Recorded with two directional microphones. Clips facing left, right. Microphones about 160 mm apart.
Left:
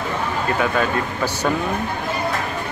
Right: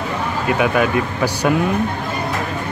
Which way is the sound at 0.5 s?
15° right (ahead or behind).